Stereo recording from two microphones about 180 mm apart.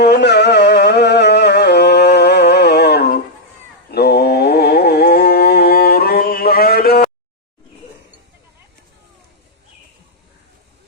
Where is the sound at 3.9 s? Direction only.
60° left (ahead or behind).